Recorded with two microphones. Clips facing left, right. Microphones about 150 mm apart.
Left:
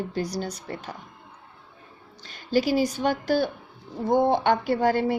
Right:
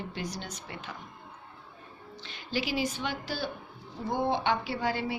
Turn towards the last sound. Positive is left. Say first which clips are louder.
# left 9 dB
turn(degrees=45)  # may be behind; listen again after turning